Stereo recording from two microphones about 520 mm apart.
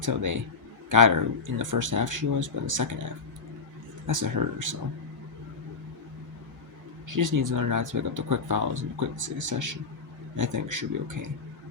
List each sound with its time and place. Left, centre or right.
0.0 s speech: right
4.0 s speech: right
7.1 s speech: right